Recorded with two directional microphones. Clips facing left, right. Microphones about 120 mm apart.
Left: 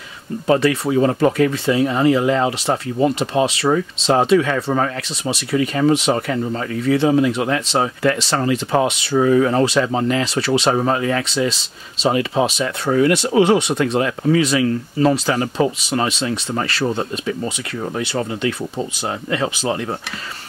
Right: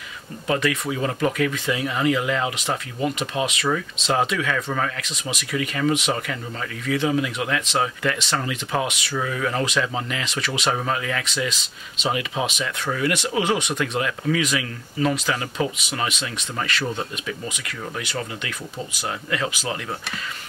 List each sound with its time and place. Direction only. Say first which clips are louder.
0.5 s speech: left 7 dB; 35° left (ahead or behind)